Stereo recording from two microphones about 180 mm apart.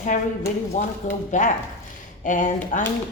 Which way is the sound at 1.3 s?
45° left (ahead or behind).